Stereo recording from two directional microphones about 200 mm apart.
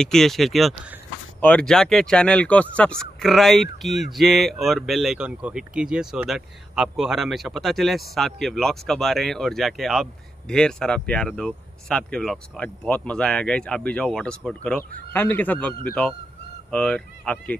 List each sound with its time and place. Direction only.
0.0 s a man's voice: centre (ahead or behind)